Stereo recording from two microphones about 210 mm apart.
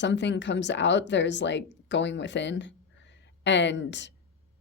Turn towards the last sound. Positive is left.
turn(degrees=55)  # may be behind; listen again after turning